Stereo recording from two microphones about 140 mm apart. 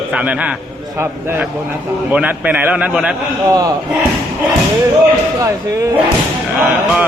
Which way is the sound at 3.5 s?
25° right (ahead or behind).